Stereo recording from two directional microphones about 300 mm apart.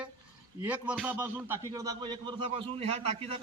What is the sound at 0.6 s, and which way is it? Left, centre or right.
A man's voice, centre.